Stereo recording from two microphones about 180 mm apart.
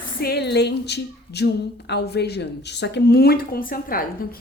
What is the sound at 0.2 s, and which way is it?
A woman's voice, 65° left (ahead or behind).